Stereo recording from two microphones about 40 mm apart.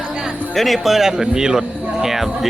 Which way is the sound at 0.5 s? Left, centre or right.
Centre.